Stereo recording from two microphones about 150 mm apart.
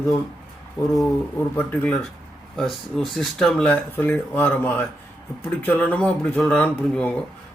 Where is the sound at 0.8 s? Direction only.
25° left (ahead or behind).